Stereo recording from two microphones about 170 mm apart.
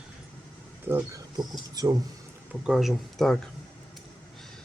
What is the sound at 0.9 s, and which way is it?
Speech, 15° right (ahead or behind).